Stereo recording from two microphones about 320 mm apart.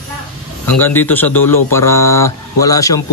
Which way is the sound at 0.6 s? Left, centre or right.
Centre.